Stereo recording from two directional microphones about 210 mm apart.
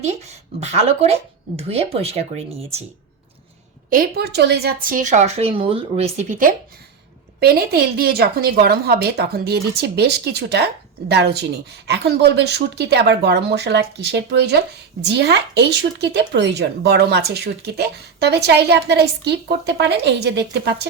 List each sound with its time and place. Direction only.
0.0 s speech: 30° right (ahead or behind)
3.8 s speech: 45° right (ahead or behind)